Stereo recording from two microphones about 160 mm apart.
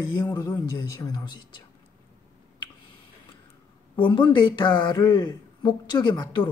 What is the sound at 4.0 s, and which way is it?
Speech, 30° left (ahead or behind).